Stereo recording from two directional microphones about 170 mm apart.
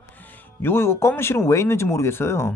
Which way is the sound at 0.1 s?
10° left (ahead or behind).